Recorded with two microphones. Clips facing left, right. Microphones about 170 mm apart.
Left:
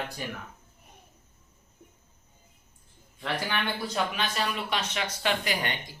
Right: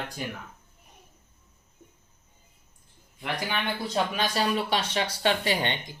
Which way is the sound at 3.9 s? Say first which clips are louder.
Right 3 dB; 35° right (ahead or behind).